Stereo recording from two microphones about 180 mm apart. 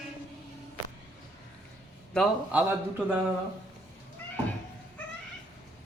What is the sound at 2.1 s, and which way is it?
Speech, 5° right (ahead or behind).